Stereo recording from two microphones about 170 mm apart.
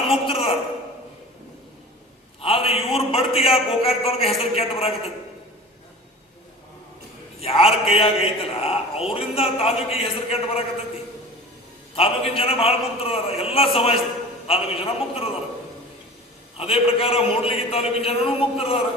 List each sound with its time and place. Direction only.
0.1 s a sound: 35° left (ahead or behind)
2.4 s a man's voice: 35° left (ahead or behind)
7.4 s a man's voice: 35° left (ahead or behind)
11.9 s a man's voice: 35° left (ahead or behind)
16.6 s a man's voice: 35° left (ahead or behind)